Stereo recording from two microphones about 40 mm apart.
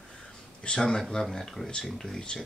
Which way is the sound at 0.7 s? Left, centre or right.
Centre.